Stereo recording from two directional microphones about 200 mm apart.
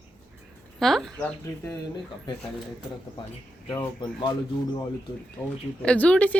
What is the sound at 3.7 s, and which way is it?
Speech, 20° left (ahead or behind).